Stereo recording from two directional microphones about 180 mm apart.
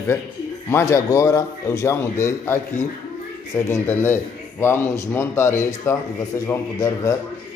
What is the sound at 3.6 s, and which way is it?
A man's voice, 10° left (ahead or behind).